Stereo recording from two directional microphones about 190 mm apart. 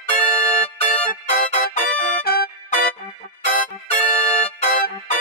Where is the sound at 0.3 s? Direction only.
5° left (ahead or behind).